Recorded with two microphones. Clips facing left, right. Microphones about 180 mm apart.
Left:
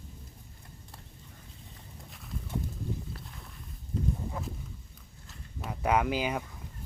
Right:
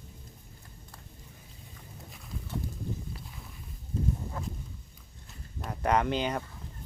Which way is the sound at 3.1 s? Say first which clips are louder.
Even; centre (ahead or behind).